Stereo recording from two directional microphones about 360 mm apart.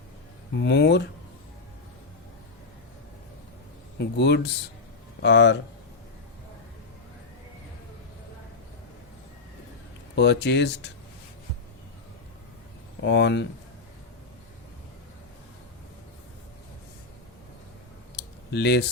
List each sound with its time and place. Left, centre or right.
0.6 s speech: left
3.9 s speech: left
10.2 s speech: left
13.0 s speech: left
18.2 s a sound: left